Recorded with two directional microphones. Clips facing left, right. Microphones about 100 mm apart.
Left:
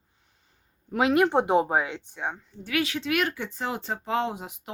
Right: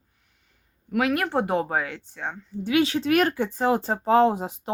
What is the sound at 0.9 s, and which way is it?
Speech, 25° left (ahead or behind).